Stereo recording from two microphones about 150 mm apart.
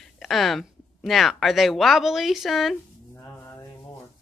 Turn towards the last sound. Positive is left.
turn(degrees=15)  # may be behind; listen again after turning